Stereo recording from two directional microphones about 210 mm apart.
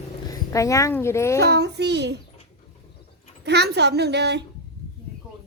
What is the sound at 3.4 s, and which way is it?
A woman's voice, 50° right (ahead or behind).